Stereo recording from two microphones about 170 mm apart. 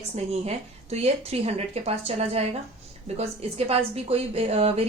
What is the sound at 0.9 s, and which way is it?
A woman's voice, 40° right (ahead or behind).